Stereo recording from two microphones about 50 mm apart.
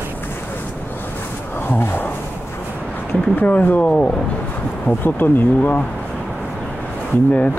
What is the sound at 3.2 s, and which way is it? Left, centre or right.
Speech, left.